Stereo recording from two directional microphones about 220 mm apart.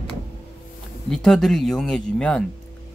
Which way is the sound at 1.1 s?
Centre (ahead or behind).